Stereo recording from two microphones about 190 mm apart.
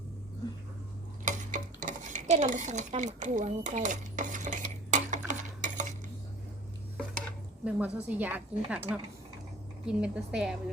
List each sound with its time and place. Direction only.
1.2 s dishes: 45° right (ahead or behind)
5.3 s cutlery: 40° right (ahead or behind)
7.6 s a woman's voice: 5° right (ahead or behind)